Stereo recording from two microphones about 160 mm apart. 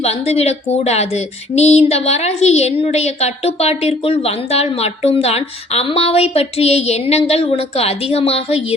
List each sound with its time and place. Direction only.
0.0 s speech: 40° left (ahead or behind)